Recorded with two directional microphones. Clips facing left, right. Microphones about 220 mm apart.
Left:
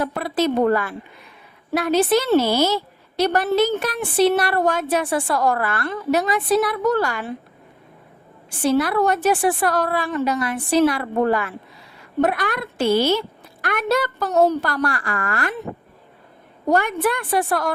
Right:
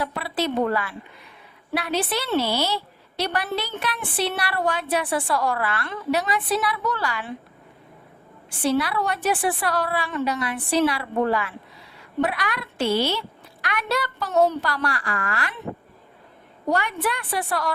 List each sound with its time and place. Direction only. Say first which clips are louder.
0.0 s a woman's voice: left 5 dB; 45° left (ahead or behind)
8.6 s a woman's voice: left 5 dB; 45° left (ahead or behind)
16.6 s a woman's voice: left 5 dB; 50° left (ahead or behind)